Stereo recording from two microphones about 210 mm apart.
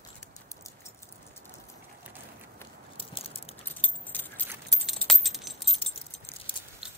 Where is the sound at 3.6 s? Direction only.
10° left (ahead or behind).